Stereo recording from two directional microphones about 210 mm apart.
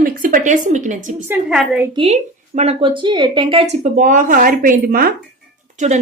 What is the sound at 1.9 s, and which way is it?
A woman's voice, 25° right (ahead or behind).